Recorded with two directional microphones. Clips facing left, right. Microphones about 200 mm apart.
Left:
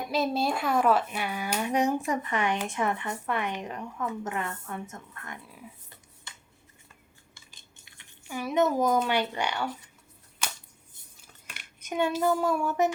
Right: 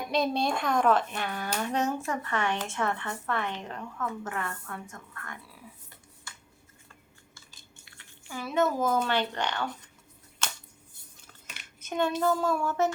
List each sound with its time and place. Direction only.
0.1 s speech: 5° left (ahead or behind)
7.9 s speech: 15° left (ahead or behind)
11.8 s speech: 15° left (ahead or behind)